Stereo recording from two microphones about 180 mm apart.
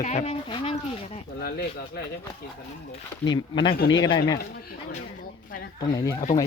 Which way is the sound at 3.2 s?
25° left (ahead or behind).